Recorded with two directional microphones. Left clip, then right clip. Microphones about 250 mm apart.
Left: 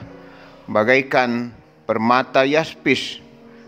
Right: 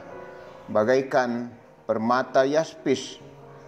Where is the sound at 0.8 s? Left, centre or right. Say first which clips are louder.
Left 5 dB; centre.